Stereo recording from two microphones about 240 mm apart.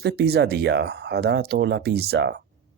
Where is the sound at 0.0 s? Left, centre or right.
Right.